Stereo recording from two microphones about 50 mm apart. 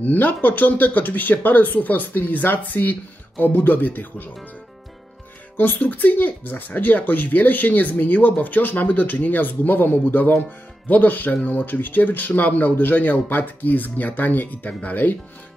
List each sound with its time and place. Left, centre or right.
0.0 s speech: left
5.6 s speech: left